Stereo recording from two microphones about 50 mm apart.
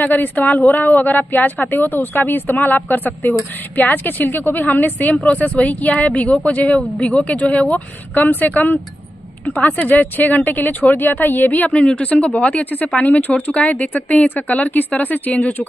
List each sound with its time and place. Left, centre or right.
0.0 s a woman's voice: left
11.7 s a woman's voice: left